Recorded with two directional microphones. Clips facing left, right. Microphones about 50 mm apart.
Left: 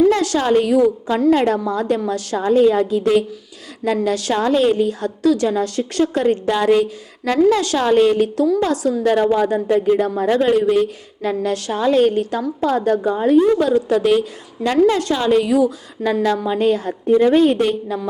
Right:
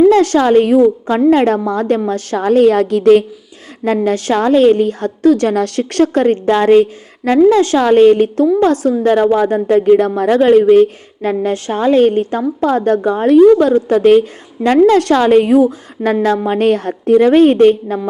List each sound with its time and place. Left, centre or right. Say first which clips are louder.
0.1 s a woman's voice: right 6 dB; right
1.5 s a woman's voice: right 4 dB; right
4.0 s a woman's voice: right 5 dB; right
12.5 s a woman's voice: right 4 dB; right
14.9 s a woman's voice: right 7 dB; right